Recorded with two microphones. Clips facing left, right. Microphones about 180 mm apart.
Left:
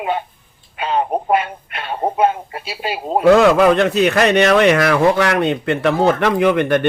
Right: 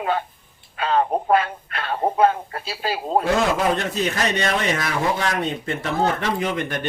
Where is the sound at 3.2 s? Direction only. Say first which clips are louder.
Left 13 dB; 70° left (ahead or behind).